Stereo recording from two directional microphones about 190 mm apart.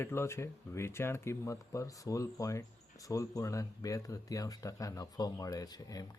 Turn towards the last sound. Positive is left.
turn(degrees=20)  # may be behind; listen again after turning